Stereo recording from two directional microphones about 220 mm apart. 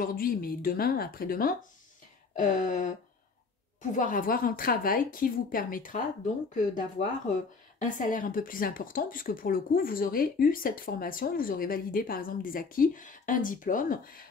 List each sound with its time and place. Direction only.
0.0 s speech: 40° left (ahead or behind)
3.9 s speech: 35° left (ahead or behind)